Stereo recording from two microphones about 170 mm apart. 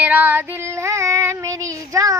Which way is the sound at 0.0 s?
10° right (ahead or behind).